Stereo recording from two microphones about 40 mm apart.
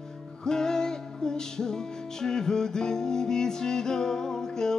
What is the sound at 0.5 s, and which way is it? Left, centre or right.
Music, centre.